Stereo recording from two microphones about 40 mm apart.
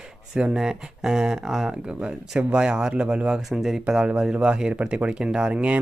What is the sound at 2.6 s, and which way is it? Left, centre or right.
Speech, right.